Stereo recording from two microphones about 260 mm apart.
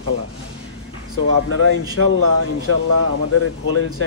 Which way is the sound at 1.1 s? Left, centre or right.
Left.